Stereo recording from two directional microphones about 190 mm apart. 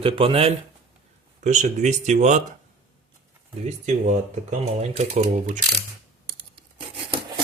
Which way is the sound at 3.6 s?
35° right (ahead or behind).